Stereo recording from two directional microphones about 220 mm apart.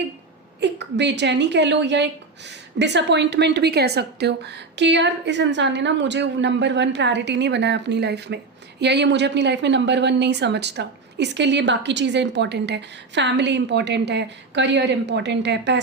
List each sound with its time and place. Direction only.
0.6 s a woman's voice: 50° right (ahead or behind)